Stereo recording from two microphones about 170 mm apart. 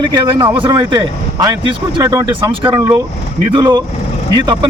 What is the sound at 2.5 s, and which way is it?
A man's voice, 30° right (ahead or behind).